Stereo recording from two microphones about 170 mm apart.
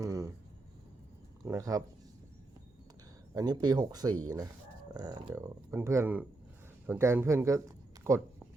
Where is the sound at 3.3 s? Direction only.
25° right (ahead or behind).